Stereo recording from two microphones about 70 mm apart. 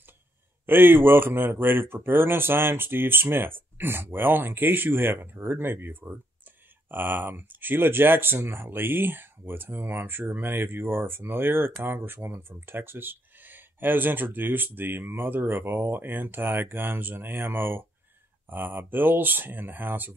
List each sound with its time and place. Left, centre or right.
0.7 s speech: right